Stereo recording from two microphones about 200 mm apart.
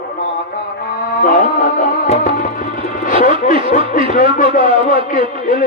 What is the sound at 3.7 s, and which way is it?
A man's voice, 40° left (ahead or behind).